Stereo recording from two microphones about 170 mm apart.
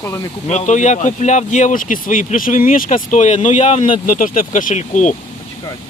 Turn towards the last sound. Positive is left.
turn(degrees=45)  # may be behind; listen again after turning